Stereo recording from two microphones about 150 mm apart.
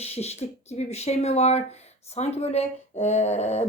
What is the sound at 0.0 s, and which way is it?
A woman's voice, 45° left (ahead or behind).